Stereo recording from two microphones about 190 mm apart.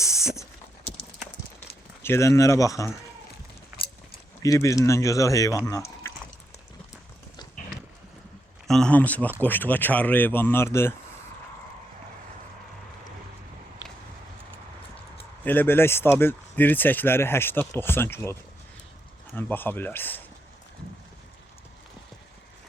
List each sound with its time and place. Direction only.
0.0 s a sound: 15° left (ahead or behind)
2.0 s speech: 15° left (ahead or behind)
4.4 s speech: 15° left (ahead or behind)
8.6 s speech: 5° left (ahead or behind)
15.4 s speech: 10° left (ahead or behind)
19.4 s speech: 10° left (ahead or behind)